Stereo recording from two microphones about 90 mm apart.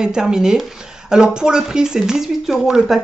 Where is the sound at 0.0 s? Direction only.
10° right (ahead or behind).